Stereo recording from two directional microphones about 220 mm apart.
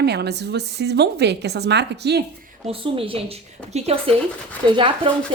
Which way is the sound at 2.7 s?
25° right (ahead or behind).